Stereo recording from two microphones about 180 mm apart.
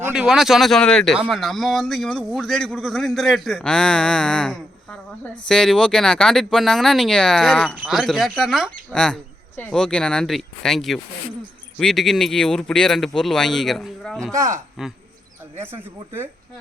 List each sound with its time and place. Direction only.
0.0 s speech: 5° right (ahead or behind)
14.3 s speech: 15° right (ahead or behind)